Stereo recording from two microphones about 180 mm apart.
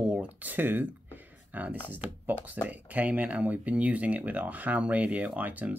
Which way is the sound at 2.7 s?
10° right (ahead or behind).